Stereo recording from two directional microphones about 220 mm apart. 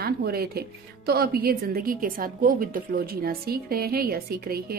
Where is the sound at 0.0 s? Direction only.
45° right (ahead or behind).